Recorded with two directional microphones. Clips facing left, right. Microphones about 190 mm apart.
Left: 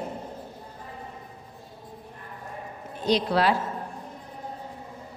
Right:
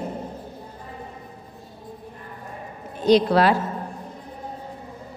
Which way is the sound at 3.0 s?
50° right (ahead or behind).